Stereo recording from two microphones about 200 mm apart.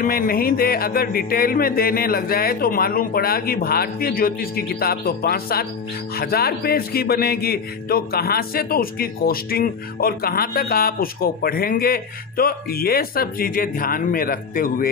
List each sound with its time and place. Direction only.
0.0 s speech: 45° left (ahead or behind)